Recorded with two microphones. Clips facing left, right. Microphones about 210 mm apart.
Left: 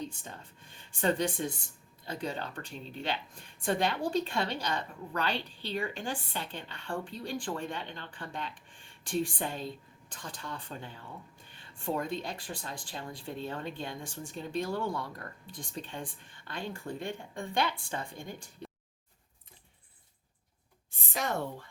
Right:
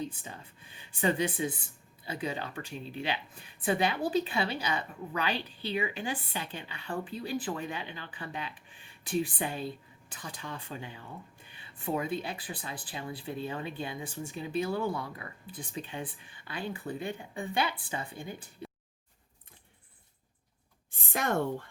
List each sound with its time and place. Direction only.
0.0 s speech: 5° right (ahead or behind)
21.1 s speech: 55° right (ahead or behind)